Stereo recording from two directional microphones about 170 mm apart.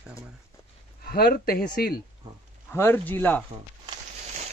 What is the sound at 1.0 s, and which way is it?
Speech, 65° left (ahead or behind).